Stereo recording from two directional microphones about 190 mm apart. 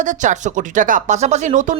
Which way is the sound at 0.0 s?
40° right (ahead or behind).